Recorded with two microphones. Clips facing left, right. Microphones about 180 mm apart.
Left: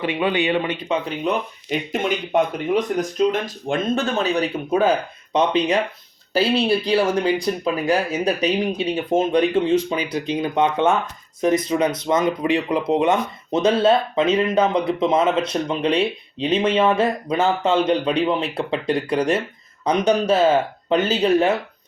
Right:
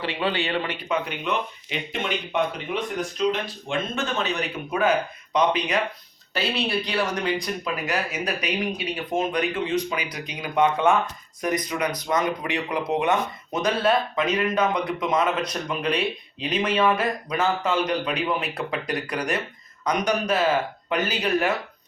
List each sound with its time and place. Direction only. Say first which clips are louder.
0.0 s speech: left 5 dB; 15° left (ahead or behind)
1.0 s speech: left 5 dB; 35° left (ahead or behind)